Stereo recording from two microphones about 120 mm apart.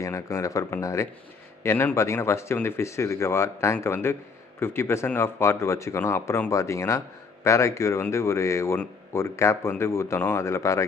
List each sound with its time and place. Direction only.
0.0 s speech: 25° left (ahead or behind)